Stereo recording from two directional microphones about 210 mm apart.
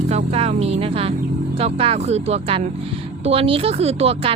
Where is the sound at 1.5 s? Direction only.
25° right (ahead or behind).